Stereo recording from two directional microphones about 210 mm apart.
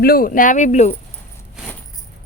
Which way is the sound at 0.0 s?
45° left (ahead or behind).